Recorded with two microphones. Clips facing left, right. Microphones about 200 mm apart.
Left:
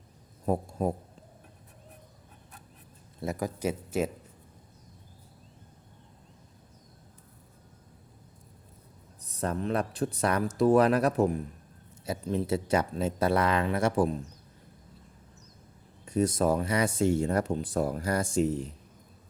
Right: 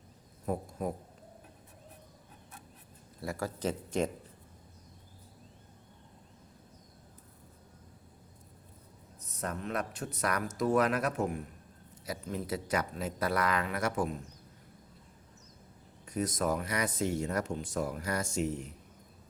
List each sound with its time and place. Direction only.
0.4 s speech: 30° left (ahead or behind)
3.2 s speech: 20° left (ahead or behind)
9.2 s speech: 30° left (ahead or behind)
16.0 s speech: 30° left (ahead or behind)